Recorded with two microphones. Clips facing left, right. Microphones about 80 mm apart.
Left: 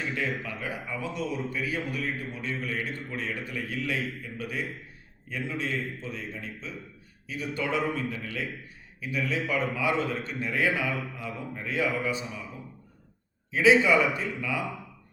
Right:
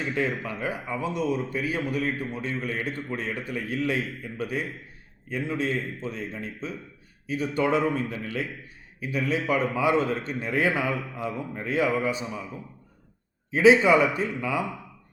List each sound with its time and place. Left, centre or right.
0.1 s a man's voice: right
13.5 s a man's voice: right